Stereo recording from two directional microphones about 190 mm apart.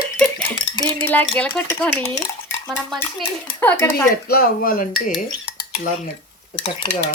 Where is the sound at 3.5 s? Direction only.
10° left (ahead or behind).